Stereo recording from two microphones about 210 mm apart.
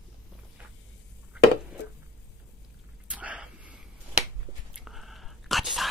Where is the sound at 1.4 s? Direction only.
5° right (ahead or behind).